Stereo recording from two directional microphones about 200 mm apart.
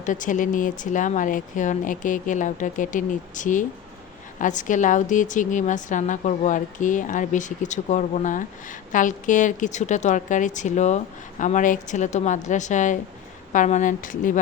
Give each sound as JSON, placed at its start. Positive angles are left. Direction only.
{"t": 0.0, "sound": "a woman's voice", "side_deg": 40}